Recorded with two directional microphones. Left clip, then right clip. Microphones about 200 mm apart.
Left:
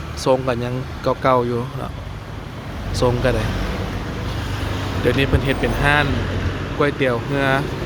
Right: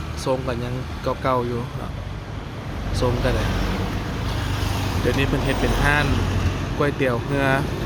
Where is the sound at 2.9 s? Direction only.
30° left (ahead or behind).